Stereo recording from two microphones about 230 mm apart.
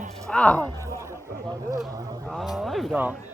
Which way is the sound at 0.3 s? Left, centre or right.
Centre.